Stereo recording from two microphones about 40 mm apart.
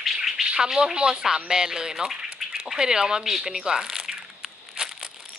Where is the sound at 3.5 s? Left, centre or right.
Centre.